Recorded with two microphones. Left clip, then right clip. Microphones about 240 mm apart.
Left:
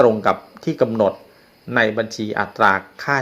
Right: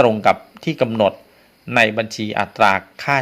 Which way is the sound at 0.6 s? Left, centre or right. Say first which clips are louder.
Left 1 dB; right.